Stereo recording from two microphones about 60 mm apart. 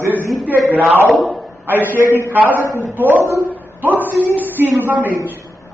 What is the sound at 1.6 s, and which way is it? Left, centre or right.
A man's voice, right.